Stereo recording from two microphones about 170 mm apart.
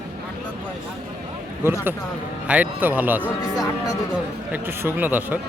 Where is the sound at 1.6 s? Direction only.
15° right (ahead or behind).